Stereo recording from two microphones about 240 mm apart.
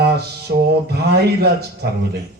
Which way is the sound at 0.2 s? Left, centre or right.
Right.